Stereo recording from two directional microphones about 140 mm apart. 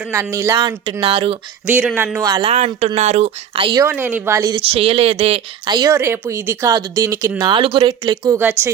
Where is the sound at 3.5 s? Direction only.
40° right (ahead or behind).